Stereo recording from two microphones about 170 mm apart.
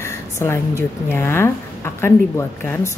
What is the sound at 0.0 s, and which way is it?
A woman's voice, 15° left (ahead or behind).